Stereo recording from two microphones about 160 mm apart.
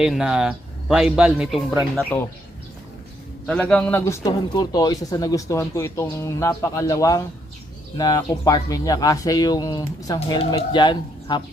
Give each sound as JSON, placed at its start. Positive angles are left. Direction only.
{"t": 0.0, "sound": "a man's voice", "side_deg": -5}
{"t": 2.1, "sound": "a man's voice", "side_deg": 10}
{"t": 3.4, "sound": "a man's voice", "side_deg": 5}
{"t": 4.0, "sound": "speech", "side_deg": 20}